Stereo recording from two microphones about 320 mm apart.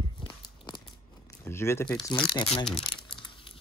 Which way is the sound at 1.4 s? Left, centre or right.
Centre.